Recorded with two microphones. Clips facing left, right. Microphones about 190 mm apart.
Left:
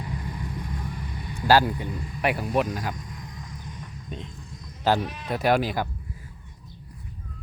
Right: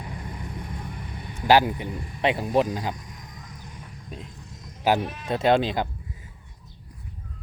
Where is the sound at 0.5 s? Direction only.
20° right (ahead or behind).